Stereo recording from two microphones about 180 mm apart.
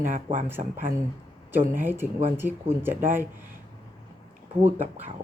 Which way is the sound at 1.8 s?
10° right (ahead or behind).